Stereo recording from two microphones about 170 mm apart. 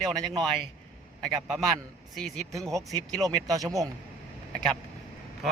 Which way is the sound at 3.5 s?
20° right (ahead or behind).